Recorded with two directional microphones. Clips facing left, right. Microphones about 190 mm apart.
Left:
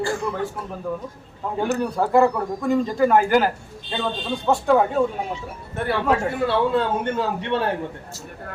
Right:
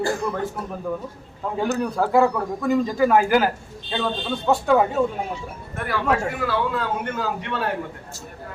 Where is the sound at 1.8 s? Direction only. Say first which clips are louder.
Left 1 dB; centre (ahead or behind).